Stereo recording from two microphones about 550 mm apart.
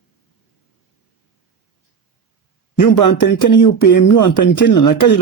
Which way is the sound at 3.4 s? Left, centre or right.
Left.